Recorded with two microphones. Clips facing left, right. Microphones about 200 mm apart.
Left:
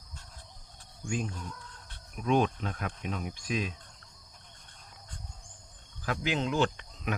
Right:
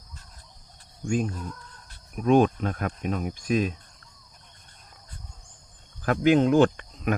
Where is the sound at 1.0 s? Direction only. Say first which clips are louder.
Right 8 dB; 50° right (ahead or behind).